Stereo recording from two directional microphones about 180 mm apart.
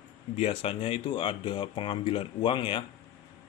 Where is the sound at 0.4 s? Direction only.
30° left (ahead or behind).